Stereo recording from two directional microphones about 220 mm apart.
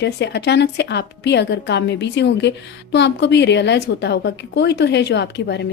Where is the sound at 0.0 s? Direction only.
50° left (ahead or behind).